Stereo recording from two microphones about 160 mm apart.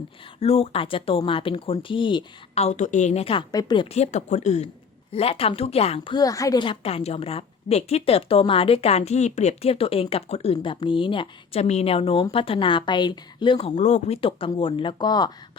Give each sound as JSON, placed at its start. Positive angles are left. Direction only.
{"t": 0.3, "sound": "a woman's voice", "side_deg": 40}
{"t": 3.5, "sound": "speech", "side_deg": 25}
{"t": 3.8, "sound": "a woman's voice", "side_deg": 40}
{"t": 6.1, "sound": "a woman's voice", "side_deg": 20}